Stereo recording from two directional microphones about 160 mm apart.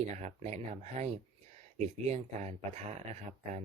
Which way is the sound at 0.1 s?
45° right (ahead or behind).